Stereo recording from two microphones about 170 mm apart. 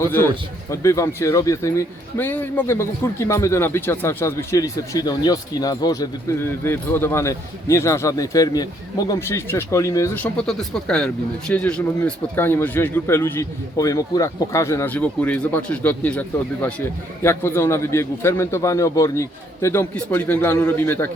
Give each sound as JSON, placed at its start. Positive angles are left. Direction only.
{"t": 0.7, "sound": "speech", "side_deg": 20}
{"t": 10.3, "sound": "speech", "side_deg": 5}
{"t": 17.2, "sound": "speech", "side_deg": 15}